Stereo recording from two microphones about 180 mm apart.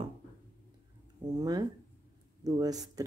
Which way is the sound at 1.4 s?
20° right (ahead or behind).